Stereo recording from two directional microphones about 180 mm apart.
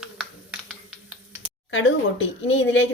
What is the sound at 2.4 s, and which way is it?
Speech, 90° left.